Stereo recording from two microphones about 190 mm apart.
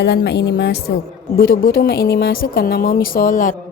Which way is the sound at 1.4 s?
50° left (ahead or behind).